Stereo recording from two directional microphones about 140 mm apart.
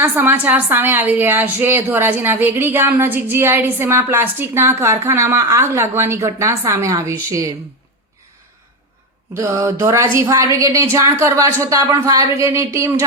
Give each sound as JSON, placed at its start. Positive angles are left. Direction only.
{"t": 0.0, "sound": "a woman's voice", "side_deg": -15}
{"t": 9.3, "sound": "a woman's voice", "side_deg": -20}